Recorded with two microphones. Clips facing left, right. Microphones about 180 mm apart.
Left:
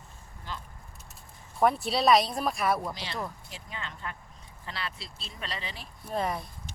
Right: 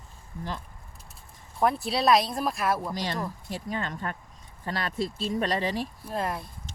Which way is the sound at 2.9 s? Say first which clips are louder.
Right 5 dB; 45° right (ahead or behind).